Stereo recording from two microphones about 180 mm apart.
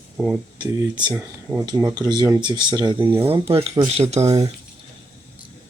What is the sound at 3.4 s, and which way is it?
Speech, 35° right (ahead or behind).